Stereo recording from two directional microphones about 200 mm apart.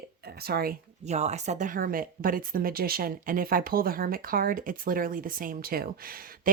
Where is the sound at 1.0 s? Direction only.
35° right (ahead or behind).